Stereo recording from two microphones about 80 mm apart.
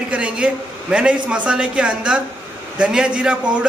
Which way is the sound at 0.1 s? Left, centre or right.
Centre.